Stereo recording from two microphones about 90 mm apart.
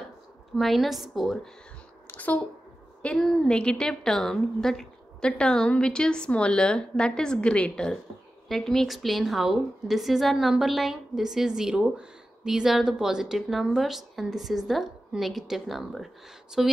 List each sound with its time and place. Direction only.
0.6 s a woman's voice: centre (ahead or behind)
2.0 s a sound: 15° left (ahead or behind)
3.0 s a woman's voice: 10° left (ahead or behind); by 16.7 s 5° right (ahead or behind)